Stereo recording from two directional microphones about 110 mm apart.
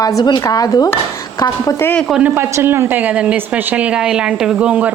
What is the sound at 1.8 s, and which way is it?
Speech, 20° left (ahead or behind).